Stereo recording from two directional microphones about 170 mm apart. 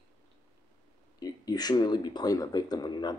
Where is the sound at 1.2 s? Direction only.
25° left (ahead or behind).